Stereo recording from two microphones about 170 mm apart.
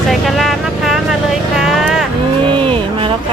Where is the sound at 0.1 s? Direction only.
Centre (ahead or behind).